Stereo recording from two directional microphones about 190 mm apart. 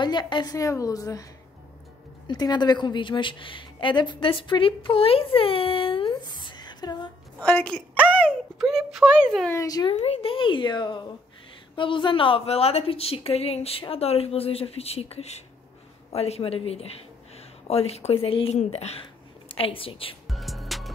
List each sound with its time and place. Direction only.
0.0 s a woman's voice: 25° left (ahead or behind)
2.2 s a woman's voice: 20° left (ahead or behind)
7.4 s a woman's voice: 5° left (ahead or behind)
9.5 s speech: 15° left (ahead or behind)
9.9 s a woman's voice: 30° left (ahead or behind)
20.2 s music: centre (ahead or behind)